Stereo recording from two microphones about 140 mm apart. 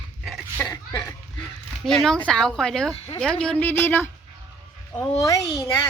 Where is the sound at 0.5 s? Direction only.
15° left (ahead or behind).